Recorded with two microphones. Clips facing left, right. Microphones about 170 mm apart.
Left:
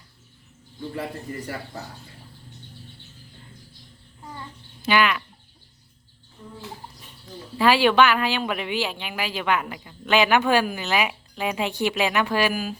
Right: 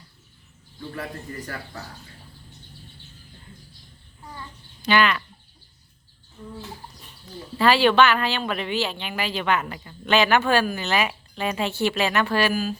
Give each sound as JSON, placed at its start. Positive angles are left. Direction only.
{"t": 0.9, "sound": "a man's voice", "side_deg": 25}
{"t": 4.9, "sound": "speech", "side_deg": 10}
{"t": 7.6, "sound": "speech", "side_deg": 10}